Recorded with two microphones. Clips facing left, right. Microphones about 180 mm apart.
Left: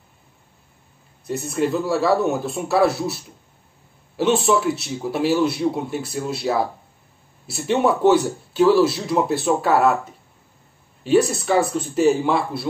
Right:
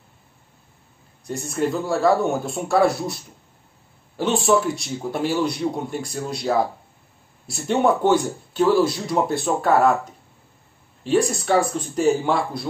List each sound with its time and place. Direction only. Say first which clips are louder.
1.2 s a man's voice: left 2 dB; 5° left (ahead or behind)
4.2 s a man's voice: left 1 dB; 5° left (ahead or behind)
11.1 s a man's voice: left 2 dB; 5° left (ahead or behind)